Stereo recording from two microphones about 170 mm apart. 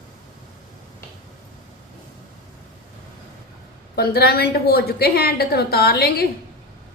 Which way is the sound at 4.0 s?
65° left (ahead or behind).